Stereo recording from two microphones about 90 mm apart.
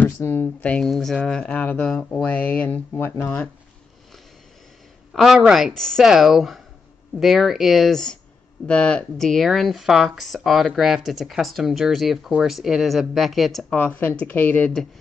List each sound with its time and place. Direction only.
0.0 s speech: 25° left (ahead or behind)
0.8 s speech: 5° left (ahead or behind); by 3.3 s 25° left (ahead or behind)
5.1 s speech: 5° right (ahead or behind)
13.7 s speech: 15° left (ahead or behind)